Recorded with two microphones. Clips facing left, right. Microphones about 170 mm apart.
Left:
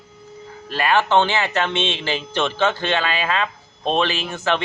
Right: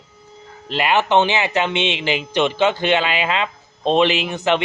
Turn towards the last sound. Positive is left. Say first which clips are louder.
# right 4 dB
turn(degrees=-20)  # may be behind; listen again after turning